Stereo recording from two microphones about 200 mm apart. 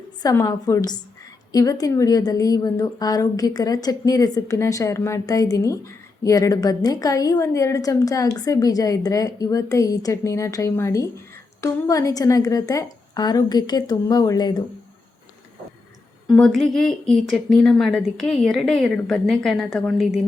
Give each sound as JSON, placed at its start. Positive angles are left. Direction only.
{"t": 0.2, "sound": "a woman's voice", "side_deg": 20}
{"t": 16.2, "sound": "speech", "side_deg": 0}